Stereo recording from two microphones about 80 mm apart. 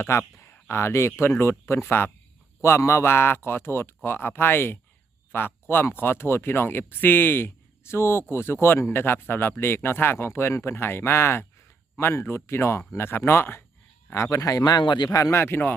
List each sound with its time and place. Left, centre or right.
0.0 s a man's voice: left
15.1 s a man's voice: left